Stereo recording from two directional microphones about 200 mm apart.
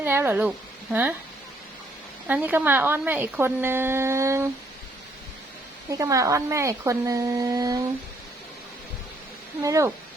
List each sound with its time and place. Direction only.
0.0 s speech: 10° right (ahead or behind)
2.2 s a woman's voice: 10° right (ahead or behind)
5.9 s a woman's voice: 15° right (ahead or behind)
9.6 s a woman's voice: 15° right (ahead or behind)